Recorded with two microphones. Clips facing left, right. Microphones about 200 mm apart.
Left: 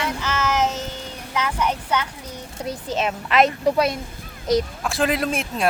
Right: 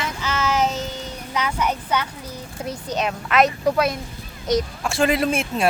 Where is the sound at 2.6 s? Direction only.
Centre (ahead or behind).